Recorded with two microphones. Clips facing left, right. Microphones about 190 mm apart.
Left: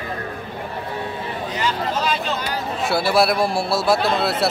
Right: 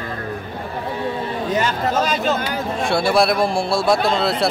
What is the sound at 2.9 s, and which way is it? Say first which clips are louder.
Speech: right 1 dB; 5° left (ahead or behind).